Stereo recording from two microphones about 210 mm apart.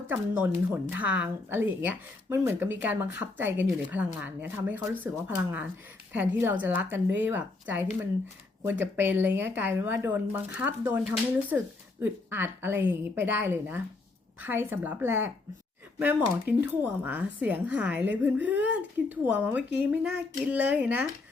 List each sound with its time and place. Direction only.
0.1 s speech: 10° right (ahead or behind)